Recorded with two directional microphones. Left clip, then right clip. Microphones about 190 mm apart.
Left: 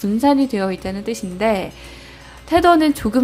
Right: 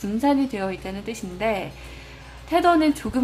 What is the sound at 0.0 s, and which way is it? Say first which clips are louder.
A woman's voice: left 6 dB; 25° left (ahead or behind).